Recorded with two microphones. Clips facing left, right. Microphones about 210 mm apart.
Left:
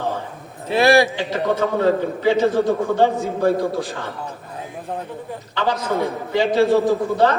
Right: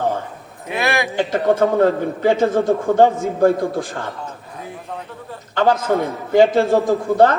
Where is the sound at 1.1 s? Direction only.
50° right (ahead or behind).